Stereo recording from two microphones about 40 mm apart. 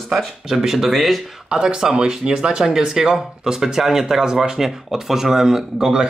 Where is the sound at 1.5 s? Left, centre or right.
Centre.